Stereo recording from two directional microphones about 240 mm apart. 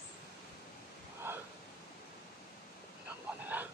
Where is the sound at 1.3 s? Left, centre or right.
Centre.